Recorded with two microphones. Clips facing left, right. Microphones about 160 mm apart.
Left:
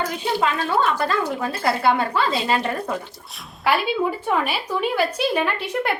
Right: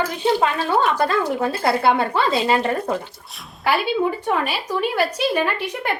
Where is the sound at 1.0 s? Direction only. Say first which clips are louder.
Right 3 dB; 30° right (ahead or behind).